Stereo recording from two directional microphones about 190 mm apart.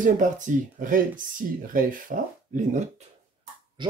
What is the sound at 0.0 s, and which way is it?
Speech, 45° right (ahead or behind).